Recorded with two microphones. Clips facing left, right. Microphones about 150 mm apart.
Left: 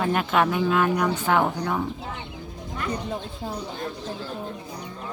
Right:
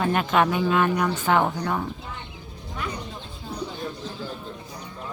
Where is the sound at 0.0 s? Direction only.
Centre (ahead or behind).